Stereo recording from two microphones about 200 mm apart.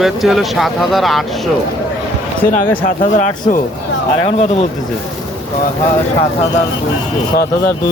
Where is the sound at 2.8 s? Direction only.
40° left (ahead or behind).